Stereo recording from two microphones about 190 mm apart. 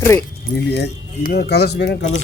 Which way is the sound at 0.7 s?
55° left (ahead or behind).